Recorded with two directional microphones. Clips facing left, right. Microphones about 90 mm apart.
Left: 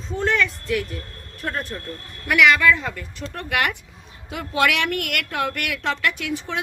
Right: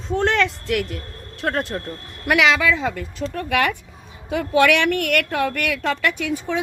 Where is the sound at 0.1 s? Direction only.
70° right (ahead or behind).